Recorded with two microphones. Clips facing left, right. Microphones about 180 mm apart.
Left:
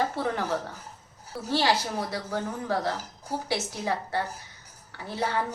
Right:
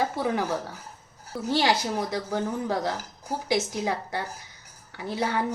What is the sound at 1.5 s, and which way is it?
A woman's voice, 15° right (ahead or behind).